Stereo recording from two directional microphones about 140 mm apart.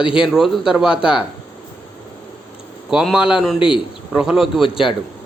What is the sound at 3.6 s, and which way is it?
Speech, 35° left (ahead or behind).